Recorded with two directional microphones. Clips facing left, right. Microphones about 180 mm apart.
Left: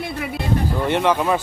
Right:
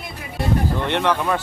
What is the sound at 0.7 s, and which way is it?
Speech, 10° left (ahead or behind).